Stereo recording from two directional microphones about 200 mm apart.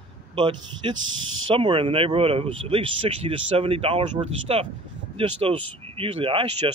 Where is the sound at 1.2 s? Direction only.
80° right.